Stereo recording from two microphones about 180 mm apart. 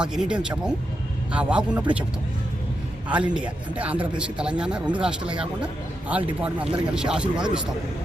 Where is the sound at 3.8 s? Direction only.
5° right (ahead or behind).